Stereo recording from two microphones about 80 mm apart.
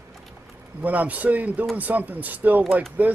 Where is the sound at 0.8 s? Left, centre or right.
Centre.